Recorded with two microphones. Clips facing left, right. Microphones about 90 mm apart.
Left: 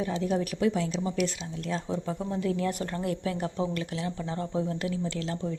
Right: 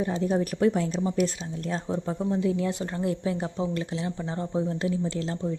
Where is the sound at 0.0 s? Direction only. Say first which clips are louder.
Right 3 dB; 35° right (ahead or behind).